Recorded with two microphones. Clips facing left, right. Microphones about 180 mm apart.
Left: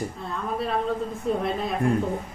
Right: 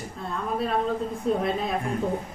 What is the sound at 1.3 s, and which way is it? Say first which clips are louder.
Speech: right 1 dB; centre (ahead or behind).